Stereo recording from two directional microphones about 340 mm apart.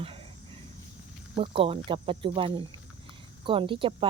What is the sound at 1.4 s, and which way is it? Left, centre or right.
Speech, centre.